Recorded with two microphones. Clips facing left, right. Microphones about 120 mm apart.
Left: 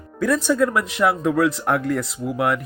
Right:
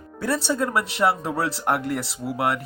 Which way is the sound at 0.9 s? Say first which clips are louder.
Left 5 dB; 30° right (ahead or behind).